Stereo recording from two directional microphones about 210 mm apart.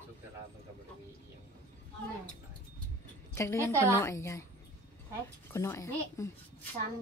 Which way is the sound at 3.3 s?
15° left (ahead or behind).